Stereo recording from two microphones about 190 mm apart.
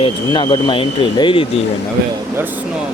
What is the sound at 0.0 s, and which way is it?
Speech, 25° left (ahead or behind).